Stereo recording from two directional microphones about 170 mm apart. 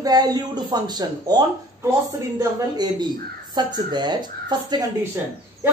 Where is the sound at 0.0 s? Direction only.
20° right (ahead or behind).